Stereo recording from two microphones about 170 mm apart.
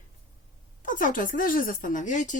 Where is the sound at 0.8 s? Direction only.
50° left (ahead or behind).